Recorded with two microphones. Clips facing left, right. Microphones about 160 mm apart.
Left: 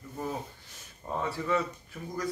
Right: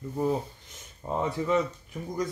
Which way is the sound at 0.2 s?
20° right (ahead or behind).